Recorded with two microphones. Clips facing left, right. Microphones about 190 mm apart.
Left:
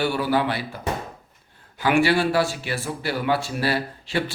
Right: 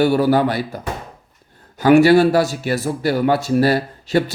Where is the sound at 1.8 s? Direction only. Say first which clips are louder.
Right 9 dB; 40° right (ahead or behind).